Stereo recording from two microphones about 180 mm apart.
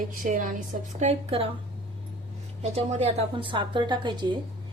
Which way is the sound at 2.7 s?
35° right (ahead or behind).